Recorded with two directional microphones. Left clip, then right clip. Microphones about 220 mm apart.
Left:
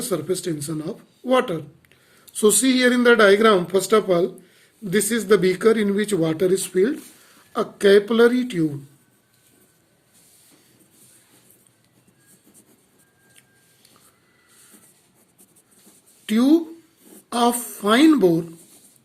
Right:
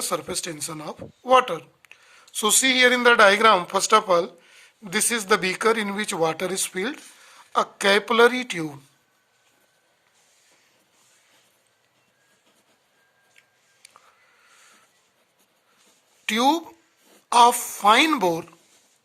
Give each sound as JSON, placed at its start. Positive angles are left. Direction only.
{"t": 0.0, "sound": "speech", "side_deg": -40}
{"t": 16.2, "sound": "speech", "side_deg": -40}